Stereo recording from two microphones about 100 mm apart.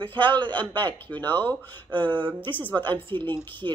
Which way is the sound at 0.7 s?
20° left (ahead or behind).